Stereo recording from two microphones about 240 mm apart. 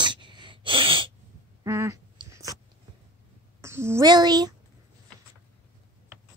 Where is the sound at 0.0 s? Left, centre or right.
Centre.